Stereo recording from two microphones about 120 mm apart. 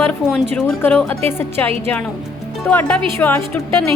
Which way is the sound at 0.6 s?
10° left (ahead or behind).